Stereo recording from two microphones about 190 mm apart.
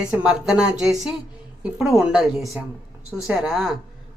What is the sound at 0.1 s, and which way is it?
Speech, 5° right (ahead or behind).